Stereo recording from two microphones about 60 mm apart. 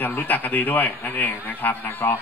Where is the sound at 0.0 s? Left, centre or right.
Left.